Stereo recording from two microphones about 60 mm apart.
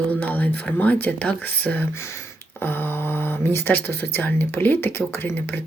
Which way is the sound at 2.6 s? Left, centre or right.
Left.